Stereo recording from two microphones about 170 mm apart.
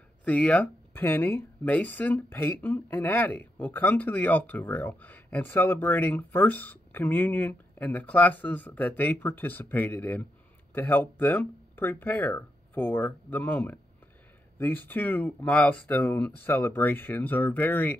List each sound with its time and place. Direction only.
0.2 s speech: 10° left (ahead or behind)